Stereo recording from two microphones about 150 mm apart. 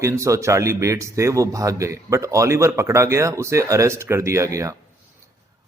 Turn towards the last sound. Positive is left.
turn(degrees=-20)  # may be behind; listen again after turning